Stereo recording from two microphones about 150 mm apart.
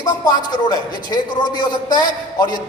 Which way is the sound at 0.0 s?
25° left (ahead or behind).